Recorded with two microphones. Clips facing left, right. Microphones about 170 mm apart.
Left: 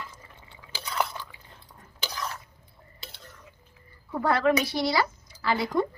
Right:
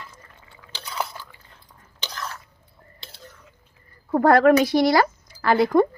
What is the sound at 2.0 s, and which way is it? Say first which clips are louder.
Chewing: even; 10° left (ahead or behind).